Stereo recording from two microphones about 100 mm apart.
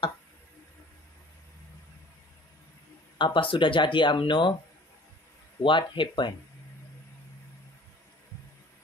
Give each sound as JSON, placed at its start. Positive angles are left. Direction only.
{"t": 3.2, "sound": "speech", "side_deg": 55}
{"t": 5.6, "sound": "speech", "side_deg": 55}